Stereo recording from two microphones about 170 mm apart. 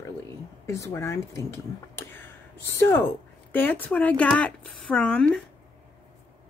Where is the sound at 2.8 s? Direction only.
15° left (ahead or behind).